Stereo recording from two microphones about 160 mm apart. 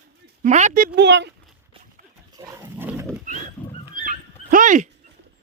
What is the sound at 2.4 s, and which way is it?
Wild animals, 20° right (ahead or behind).